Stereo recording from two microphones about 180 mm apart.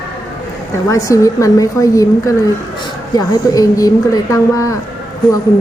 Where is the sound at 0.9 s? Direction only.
15° left (ahead or behind).